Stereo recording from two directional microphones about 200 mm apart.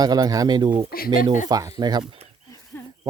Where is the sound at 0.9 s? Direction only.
45° left (ahead or behind).